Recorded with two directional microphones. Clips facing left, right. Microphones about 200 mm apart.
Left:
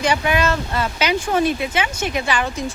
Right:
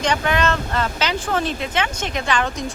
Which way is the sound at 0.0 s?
10° left (ahead or behind).